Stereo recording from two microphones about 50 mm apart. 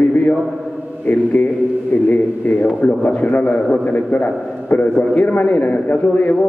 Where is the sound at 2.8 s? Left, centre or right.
Left.